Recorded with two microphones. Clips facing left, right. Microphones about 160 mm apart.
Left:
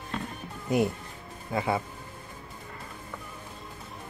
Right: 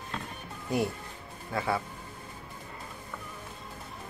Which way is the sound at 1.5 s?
20° left (ahead or behind).